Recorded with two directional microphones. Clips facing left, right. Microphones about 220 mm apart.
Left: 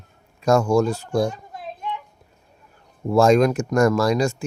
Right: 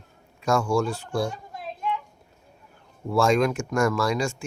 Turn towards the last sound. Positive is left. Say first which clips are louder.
# left 5 dB
turn(degrees=40)  # may be behind; listen again after turning